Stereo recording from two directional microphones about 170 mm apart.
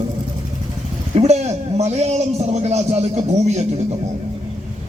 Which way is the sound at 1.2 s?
40° right (ahead or behind).